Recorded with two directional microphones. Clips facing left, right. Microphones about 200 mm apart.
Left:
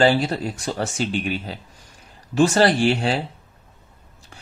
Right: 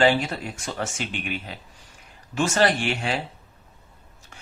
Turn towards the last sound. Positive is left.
turn(degrees=35)  # may be behind; listen again after turning